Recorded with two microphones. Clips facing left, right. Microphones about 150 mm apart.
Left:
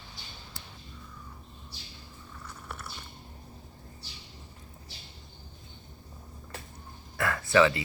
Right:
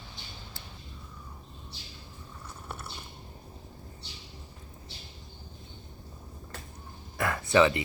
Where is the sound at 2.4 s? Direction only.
25° right (ahead or behind).